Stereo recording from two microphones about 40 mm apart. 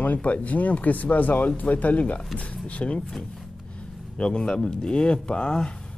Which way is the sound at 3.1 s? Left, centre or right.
Centre.